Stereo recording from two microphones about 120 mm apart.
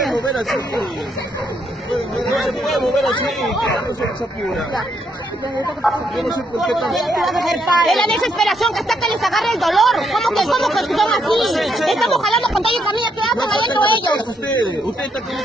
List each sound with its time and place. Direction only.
2.3 s speech: centre (ahead or behind)
5.8 s speech: centre (ahead or behind)
13.4 s a woman's voice: 40° left (ahead or behind)